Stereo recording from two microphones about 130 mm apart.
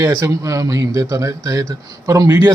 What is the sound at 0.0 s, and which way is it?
Speech, 25° right (ahead or behind).